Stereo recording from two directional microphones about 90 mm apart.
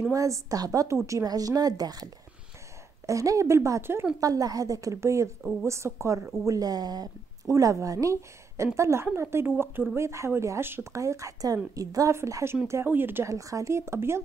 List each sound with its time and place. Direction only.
0.1 s a woman's voice: 40° right (ahead or behind)
3.1 s speech: 35° right (ahead or behind)
4.2 s speech: 40° right (ahead or behind); by 13.3 s 25° right (ahead or behind)
13.3 s speech: 35° right (ahead or behind)